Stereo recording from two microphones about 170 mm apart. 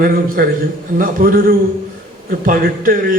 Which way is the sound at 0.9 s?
55° right (ahead or behind).